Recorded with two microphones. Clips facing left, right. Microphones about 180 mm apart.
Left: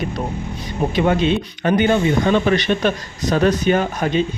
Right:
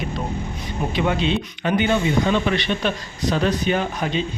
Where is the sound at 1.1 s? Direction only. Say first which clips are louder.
Left 4 dB; 45° left (ahead or behind).